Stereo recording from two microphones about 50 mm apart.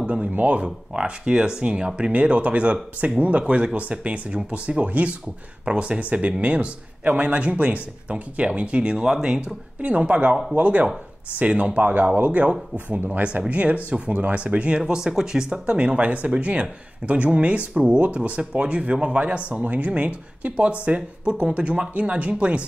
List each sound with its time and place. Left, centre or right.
0.0 s speech: right
14.8 s speech: centre